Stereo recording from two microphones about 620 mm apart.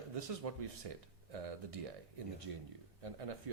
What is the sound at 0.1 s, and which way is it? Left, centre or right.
Speech, right.